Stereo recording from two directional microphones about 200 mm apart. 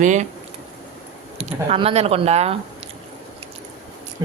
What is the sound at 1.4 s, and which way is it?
Speech, 30° right (ahead or behind).